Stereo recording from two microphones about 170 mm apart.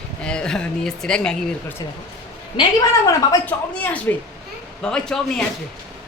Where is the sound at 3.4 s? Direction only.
10° left (ahead or behind).